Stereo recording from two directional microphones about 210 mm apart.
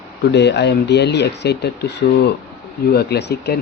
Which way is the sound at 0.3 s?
55° left (ahead or behind).